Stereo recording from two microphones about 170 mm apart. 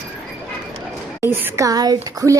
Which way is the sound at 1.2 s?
15° right (ahead or behind).